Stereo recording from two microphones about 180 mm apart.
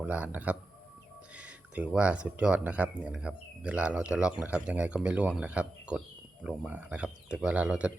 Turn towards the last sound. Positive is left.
turn(degrees=-5)  # may be behind; listen again after turning